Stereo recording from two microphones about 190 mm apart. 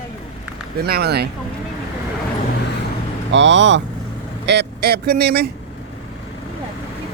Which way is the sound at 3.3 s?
70° right (ahead or behind).